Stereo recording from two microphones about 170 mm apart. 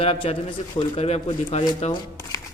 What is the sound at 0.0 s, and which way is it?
Speech, 35° left (ahead or behind).